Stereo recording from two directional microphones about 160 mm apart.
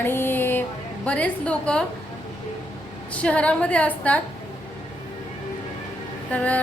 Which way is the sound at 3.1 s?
10° left (ahead or behind).